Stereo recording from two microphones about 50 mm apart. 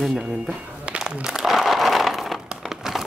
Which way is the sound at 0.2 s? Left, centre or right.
Centre.